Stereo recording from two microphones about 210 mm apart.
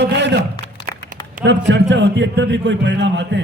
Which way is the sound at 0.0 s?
55° right (ahead or behind).